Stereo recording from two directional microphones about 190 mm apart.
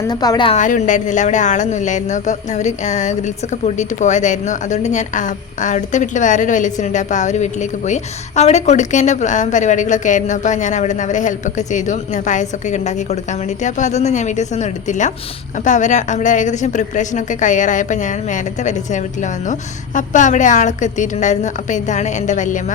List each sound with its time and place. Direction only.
0.1 s a woman's voice: 20° left (ahead or behind)
0.5 s a woman's voice: 40° left (ahead or behind)